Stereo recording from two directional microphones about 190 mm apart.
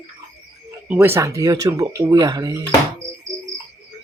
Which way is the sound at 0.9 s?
15° right (ahead or behind).